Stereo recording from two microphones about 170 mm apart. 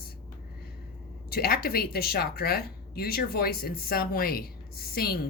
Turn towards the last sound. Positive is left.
turn(degrees=65)  # may be behind; listen again after turning